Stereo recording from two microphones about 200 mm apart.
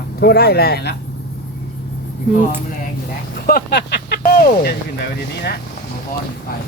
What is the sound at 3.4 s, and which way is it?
Speech, 50° left (ahead or behind).